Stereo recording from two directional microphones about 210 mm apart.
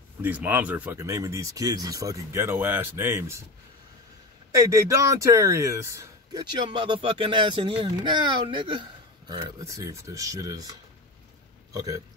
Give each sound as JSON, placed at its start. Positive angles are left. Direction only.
{"t": 0.2, "sound": "speech", "side_deg": -10}
{"t": 4.5, "sound": "speech", "side_deg": -15}
{"t": 11.7, "sound": "speech", "side_deg": -15}